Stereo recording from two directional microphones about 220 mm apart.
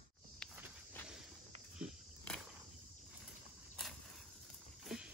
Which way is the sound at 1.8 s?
5° left (ahead or behind).